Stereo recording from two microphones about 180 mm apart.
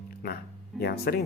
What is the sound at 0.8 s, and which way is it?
Speech, 65° left (ahead or behind).